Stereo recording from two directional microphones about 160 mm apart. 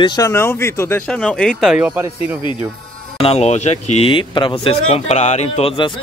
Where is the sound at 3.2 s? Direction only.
40° left (ahead or behind).